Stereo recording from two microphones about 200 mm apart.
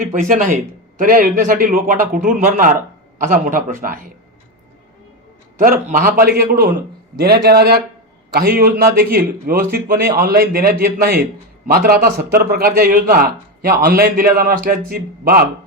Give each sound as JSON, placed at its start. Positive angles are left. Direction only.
{"t": 0.0, "sound": "a man's voice", "side_deg": -40}
{"t": 5.5, "sound": "a man's voice", "side_deg": -45}